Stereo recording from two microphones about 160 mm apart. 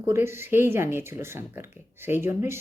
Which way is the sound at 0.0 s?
15° right (ahead or behind).